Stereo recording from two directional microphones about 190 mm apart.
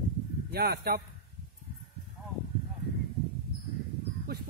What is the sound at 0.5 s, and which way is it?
Speech, 55° right (ahead or behind).